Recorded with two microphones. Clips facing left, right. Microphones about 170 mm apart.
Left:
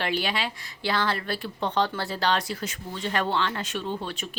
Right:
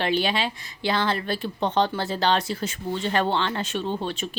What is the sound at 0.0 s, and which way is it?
Speech, 25° right (ahead or behind).